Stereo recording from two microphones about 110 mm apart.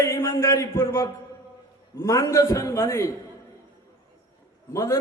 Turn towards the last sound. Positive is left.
turn(degrees=30)  # may be behind; listen again after turning